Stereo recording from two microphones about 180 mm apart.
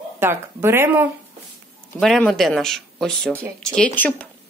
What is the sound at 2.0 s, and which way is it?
Speech, centre (ahead or behind).